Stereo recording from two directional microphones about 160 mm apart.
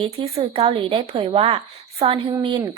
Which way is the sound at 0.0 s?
35° right (ahead or behind).